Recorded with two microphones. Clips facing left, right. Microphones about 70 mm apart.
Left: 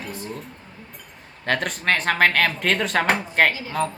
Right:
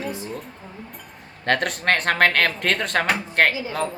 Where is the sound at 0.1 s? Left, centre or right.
Centre.